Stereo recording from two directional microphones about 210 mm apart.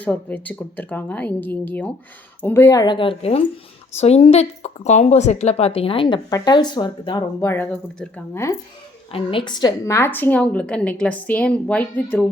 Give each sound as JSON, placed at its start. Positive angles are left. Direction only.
{"t": 0.0, "sound": "a woman's voice", "side_deg": 5}
{"t": 9.1, "sound": "a woman's voice", "side_deg": 25}